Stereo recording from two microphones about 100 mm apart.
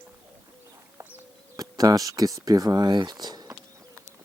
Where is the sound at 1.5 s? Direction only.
35° right (ahead or behind).